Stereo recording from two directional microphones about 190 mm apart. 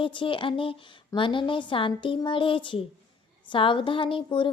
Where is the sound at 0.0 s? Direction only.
25° left (ahead or behind).